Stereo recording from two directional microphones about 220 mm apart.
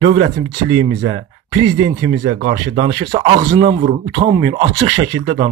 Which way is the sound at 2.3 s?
30° right (ahead or behind).